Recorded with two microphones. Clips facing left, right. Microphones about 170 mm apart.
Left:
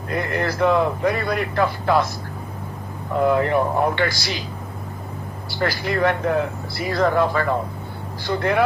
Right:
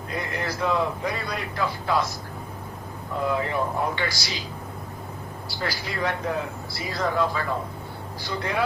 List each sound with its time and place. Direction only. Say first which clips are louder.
0.1 s a man's voice: left 7 dB; 60° left (ahead or behind)
3.2 s a man's voice: left 7 dB; 60° left (ahead or behind)
5.5 s a man's voice: left 8 dB; 55° left (ahead or behind)